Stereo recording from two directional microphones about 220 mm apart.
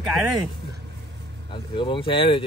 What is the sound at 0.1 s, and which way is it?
Speech, centre (ahead or behind).